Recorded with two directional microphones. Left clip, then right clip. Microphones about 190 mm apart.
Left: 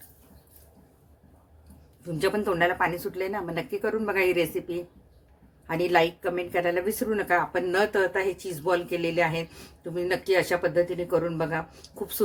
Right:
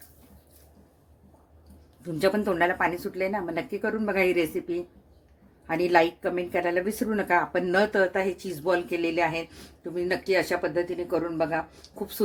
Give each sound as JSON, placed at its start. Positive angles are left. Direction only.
{"t": 2.1, "sound": "speech", "side_deg": -15}